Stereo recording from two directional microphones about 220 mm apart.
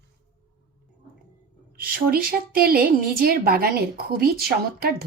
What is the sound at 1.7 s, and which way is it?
A woman's voice, 40° right (ahead or behind).